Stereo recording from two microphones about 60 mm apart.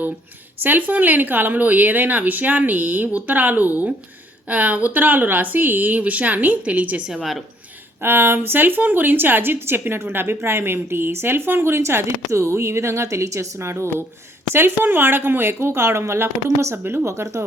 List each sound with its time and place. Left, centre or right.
0.6 s speech: right
7.1 s a woman's voice: centre
8.0 s a woman's voice: right
16.7 s a woman's voice: right
17.1 s speech: right